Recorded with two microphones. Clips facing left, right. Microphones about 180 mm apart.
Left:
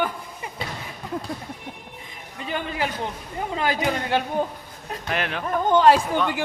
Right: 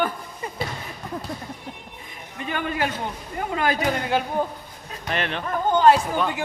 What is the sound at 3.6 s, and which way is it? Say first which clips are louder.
Speech: right 1 dB; 25° left (ahead or behind).